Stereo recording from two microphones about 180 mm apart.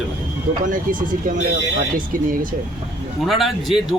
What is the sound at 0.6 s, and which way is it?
Speech, 50° right (ahead or behind).